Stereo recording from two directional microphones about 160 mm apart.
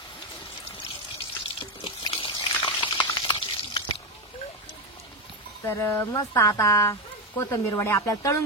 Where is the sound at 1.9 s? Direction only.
35° left (ahead or behind).